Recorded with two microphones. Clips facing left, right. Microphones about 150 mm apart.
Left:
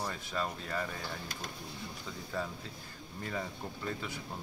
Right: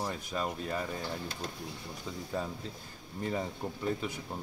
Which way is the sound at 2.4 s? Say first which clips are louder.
Left 1 dB; 20° right (ahead or behind).